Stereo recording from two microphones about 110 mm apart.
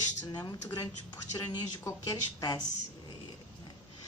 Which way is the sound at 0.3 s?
40° left (ahead or behind).